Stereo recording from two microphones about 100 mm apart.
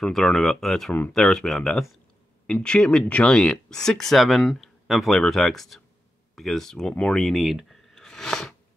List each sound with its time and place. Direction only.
0.0 s speech: 5° left (ahead or behind)